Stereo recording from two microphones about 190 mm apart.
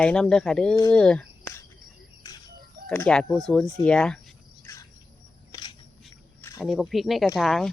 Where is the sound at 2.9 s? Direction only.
10° left (ahead or behind).